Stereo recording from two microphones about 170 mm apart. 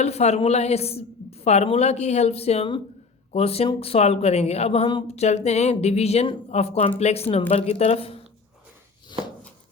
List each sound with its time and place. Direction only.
0.0 s speech: 40° left (ahead or behind)